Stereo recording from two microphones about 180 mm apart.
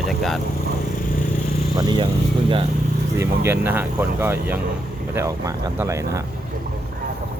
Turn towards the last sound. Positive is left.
turn(degrees=-15)  # may be behind; listen again after turning